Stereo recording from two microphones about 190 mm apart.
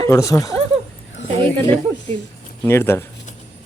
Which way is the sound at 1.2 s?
75° left (ahead or behind).